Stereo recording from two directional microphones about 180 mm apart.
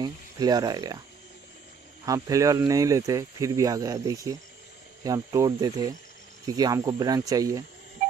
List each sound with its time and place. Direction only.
0.0 s speech: 20° right (ahead or behind)
2.0 s speech: 20° right (ahead or behind)